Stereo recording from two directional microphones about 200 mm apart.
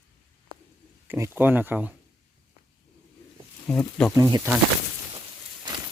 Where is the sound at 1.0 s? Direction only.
10° right (ahead or behind).